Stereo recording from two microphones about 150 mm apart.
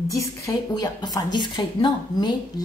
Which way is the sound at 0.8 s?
25° left (ahead or behind).